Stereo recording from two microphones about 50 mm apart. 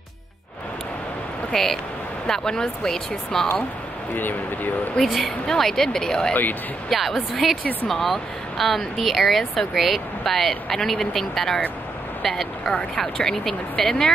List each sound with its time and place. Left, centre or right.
1.5 s speech: centre
4.9 s speech: centre
6.9 s speech: centre